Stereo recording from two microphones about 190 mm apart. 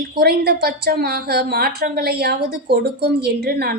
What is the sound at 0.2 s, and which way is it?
A woman's voice, 55° right (ahead or behind).